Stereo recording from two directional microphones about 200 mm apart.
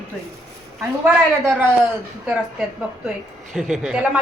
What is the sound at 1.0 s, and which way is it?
A woman's voice, 10° right (ahead or behind).